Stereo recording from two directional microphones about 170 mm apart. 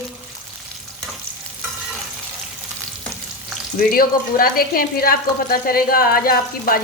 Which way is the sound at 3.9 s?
60° left (ahead or behind).